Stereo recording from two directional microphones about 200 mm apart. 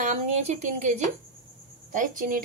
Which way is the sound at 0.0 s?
35° right (ahead or behind).